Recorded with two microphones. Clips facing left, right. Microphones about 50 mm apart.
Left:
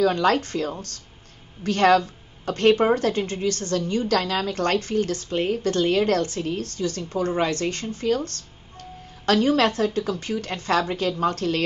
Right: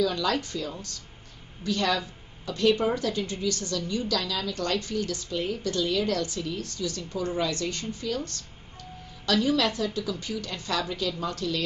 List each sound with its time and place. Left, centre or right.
0.0 s a woman's voice: left